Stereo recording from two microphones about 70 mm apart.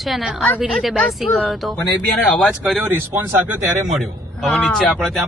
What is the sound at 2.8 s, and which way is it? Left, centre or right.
Speech, right.